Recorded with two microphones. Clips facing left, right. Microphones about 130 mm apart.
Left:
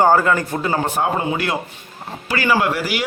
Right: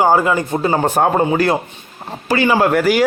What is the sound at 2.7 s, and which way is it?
Speech, 50° right (ahead or behind).